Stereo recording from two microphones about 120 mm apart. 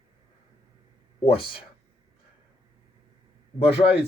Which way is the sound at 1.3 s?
50° left (ahead or behind).